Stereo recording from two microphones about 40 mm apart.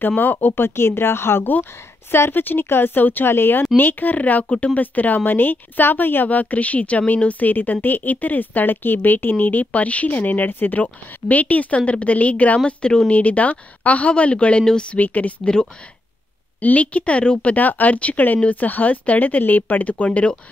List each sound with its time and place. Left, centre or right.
0.1 s a woman's voice: left
0.6 s speech: left
1.5 s speech: left
3.3 s speech: left
3.7 s a woman's voice: left
6.2 s a woman's voice: left
10.8 s speech: left
12.6 s a woman's voice: left
13.1 s speech: left
14.6 s speech: centre
15.0 s speech: left
15.4 s a woman's voice: centre
16.6 s a woman's voice: left